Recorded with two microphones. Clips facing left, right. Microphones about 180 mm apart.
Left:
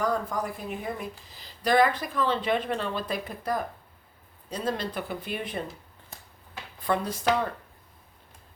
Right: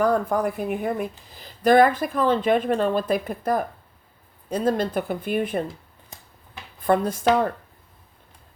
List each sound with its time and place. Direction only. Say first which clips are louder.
0.0 s speech: right 7 dB; 60° right (ahead or behind)
6.8 s speech: right 6 dB; 50° right (ahead or behind)